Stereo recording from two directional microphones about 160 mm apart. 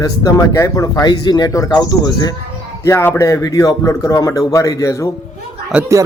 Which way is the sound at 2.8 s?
15° left (ahead or behind).